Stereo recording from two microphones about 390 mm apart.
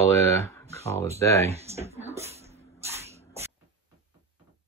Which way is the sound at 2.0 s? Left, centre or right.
Centre.